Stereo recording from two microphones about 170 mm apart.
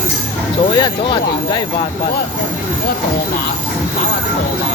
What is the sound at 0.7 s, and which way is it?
Speech, 25° left (ahead or behind).